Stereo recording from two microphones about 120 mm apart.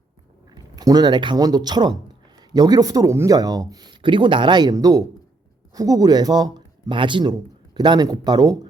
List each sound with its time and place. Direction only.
0.5 s speech: 35° right (ahead or behind)